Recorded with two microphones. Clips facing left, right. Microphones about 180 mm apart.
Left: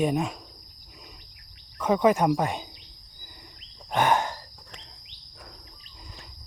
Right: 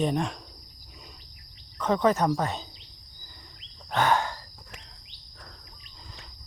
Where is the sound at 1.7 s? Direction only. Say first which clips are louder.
Left 2 dB; 10° left (ahead or behind).